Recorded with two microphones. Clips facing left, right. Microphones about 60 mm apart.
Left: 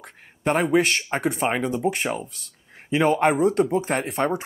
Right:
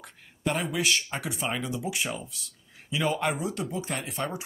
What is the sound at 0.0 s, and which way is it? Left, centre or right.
Speech, left.